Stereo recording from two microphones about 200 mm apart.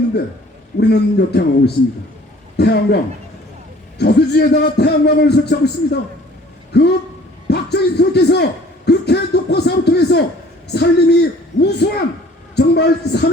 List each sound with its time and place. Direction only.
0.8 s a man's voice: 55° left (ahead or behind)
6.7 s a man's voice: 55° left (ahead or behind)